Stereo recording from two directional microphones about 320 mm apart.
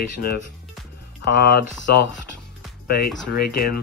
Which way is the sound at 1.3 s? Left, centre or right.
Left.